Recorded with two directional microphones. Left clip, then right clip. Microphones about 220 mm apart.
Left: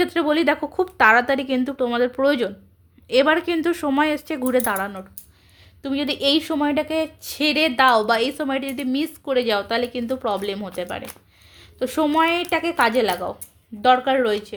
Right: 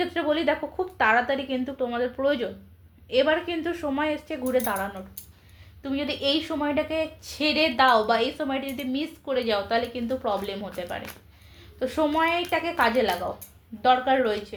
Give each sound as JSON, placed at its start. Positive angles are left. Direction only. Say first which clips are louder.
{"t": 0.0, "sound": "a woman's voice", "louder": "left 5 dB", "side_deg": 50}